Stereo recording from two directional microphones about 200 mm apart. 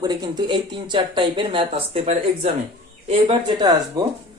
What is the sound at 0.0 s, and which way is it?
Speech, 20° right (ahead or behind).